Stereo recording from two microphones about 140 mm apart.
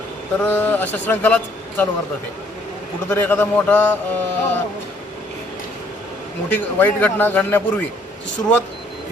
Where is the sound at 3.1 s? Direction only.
15° left (ahead or behind).